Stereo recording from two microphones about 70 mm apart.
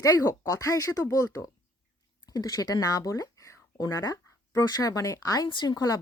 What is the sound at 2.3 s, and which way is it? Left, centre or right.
A woman's voice, left.